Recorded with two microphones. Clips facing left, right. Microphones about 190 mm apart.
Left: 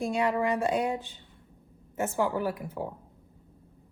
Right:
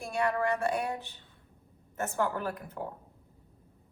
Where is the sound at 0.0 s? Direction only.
20° left (ahead or behind).